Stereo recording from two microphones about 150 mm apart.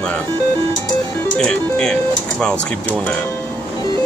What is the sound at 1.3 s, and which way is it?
Speech, 5° left (ahead or behind).